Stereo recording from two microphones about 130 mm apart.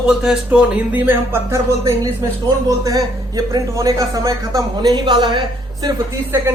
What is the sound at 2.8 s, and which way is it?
Speech, 30° right (ahead or behind).